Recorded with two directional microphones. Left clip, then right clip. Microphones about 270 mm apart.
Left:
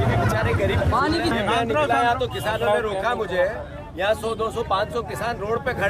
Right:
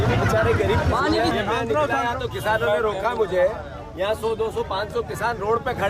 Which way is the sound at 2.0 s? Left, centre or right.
Centre.